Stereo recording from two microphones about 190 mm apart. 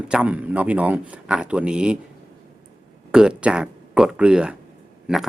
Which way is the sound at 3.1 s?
5° right (ahead or behind).